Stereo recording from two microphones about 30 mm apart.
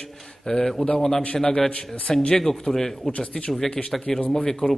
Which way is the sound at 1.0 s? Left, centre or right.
Centre.